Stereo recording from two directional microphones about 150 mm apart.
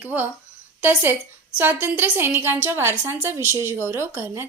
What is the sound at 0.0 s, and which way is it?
A woman's voice, 10° right (ahead or behind).